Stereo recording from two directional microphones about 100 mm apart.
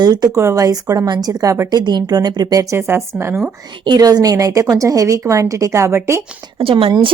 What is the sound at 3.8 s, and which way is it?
A woman's voice, 45° right (ahead or behind).